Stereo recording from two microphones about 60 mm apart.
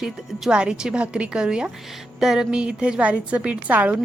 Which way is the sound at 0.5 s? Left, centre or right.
Centre.